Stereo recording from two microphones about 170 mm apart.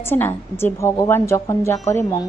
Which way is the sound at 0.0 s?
15° left (ahead or behind).